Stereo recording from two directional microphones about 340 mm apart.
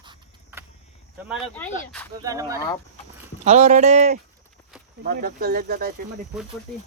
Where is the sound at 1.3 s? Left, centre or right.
Centre.